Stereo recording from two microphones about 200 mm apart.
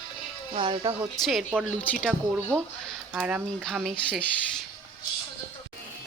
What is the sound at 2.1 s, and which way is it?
A woman's voice, 10° right (ahead or behind).